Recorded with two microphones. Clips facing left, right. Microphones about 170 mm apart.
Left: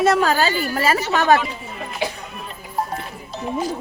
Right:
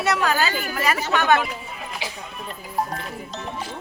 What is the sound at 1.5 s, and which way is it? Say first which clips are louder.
Music: left 2 dB; centre (ahead or behind).